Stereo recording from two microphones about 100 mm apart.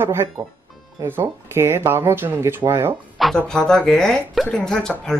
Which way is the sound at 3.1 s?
5° left (ahead or behind).